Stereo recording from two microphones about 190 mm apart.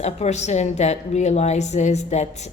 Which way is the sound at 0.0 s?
35° left (ahead or behind).